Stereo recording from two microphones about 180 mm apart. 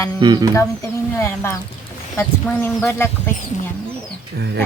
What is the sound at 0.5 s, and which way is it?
Speech, 15° left (ahead or behind).